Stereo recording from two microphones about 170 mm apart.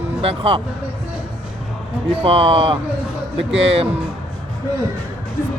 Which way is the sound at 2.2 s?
35° right (ahead or behind).